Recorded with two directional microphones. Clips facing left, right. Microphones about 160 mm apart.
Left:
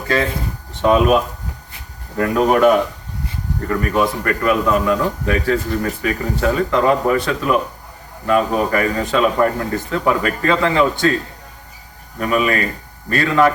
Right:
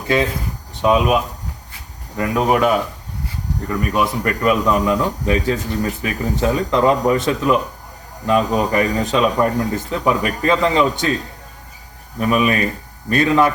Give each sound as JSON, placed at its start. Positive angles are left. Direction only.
{"t": 0.1, "sound": "speech", "side_deg": -20}
{"t": 2.1, "sound": "speech", "side_deg": -5}
{"t": 3.7, "sound": "speech", "side_deg": -15}
{"t": 12.2, "sound": "speech", "side_deg": -20}